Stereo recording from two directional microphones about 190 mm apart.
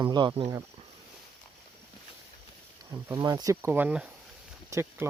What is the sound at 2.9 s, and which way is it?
Speech, 20° right (ahead or behind).